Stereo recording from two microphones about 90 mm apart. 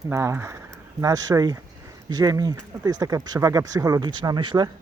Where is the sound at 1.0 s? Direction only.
40° right (ahead or behind).